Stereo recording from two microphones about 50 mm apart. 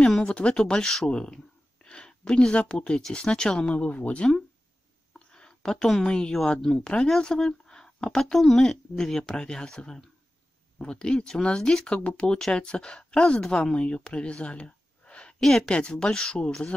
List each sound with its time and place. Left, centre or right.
0.2 s speech: left
1.9 s a sound: centre
2.5 s speech: left
5.3 s a sound: centre
6.0 s speech: centre
15.4 s speech: centre